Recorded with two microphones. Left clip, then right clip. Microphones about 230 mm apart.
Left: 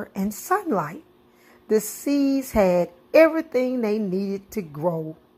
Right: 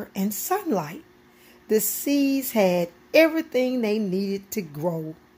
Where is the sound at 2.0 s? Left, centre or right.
Centre.